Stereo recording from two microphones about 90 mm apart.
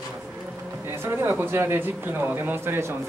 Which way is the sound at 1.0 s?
25° right (ahead or behind).